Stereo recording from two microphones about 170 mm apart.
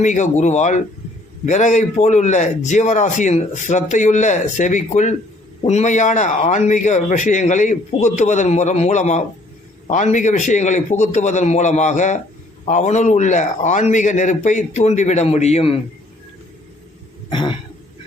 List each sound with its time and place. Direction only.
0.0 s a man's voice: 45° left (ahead or behind)
17.2 s throat clearing: 30° left (ahead or behind)